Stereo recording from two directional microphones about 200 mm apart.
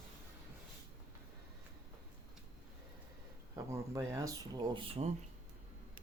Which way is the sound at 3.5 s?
15° right (ahead or behind).